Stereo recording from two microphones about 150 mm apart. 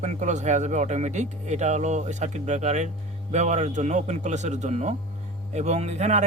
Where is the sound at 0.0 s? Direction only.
50° right (ahead or behind).